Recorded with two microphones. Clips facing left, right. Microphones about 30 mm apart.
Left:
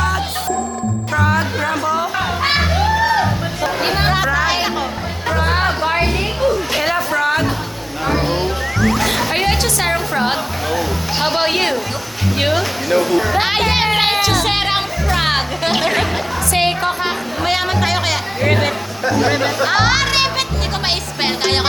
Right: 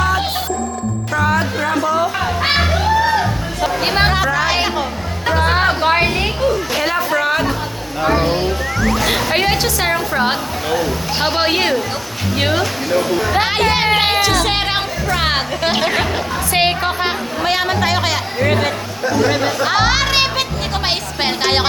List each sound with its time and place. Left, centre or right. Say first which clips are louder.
1.1 s music: right 1 dB; centre
5.8 s a sound: right 3 dB; right
6.4 s music: left 2 dB; centre
7.1 s a sound: even; centre
8.0 s music: right 2 dB; centre
9.3 s speech: right 1 dB; centre
13.4 s a sound: right 1 dB; centre
15.1 s speech: even; centre
16.5 s speech: right 1 dB; centre
17.4 s speech: right 1 dB; centre
19.6 s music: even; centre